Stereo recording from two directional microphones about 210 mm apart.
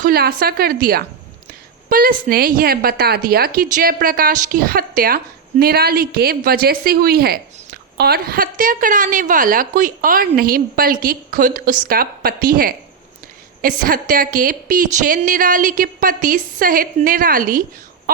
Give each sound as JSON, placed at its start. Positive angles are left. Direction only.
{"t": 0.0, "sound": "a woman's voice", "side_deg": -45}